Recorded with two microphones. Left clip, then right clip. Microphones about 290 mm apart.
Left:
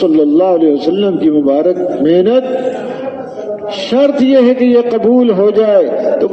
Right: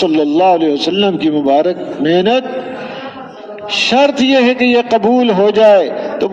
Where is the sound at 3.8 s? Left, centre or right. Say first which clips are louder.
Left 1 dB; right.